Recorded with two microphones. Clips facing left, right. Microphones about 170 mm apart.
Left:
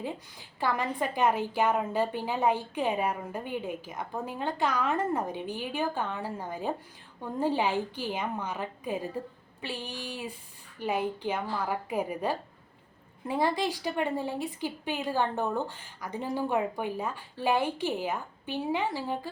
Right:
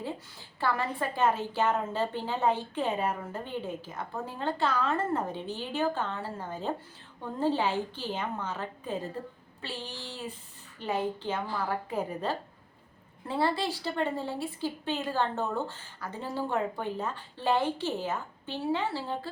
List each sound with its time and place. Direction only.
0.0 s a woman's voice: 15° left (ahead or behind)